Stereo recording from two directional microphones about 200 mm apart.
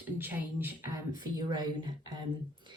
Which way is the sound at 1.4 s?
20° right (ahead or behind).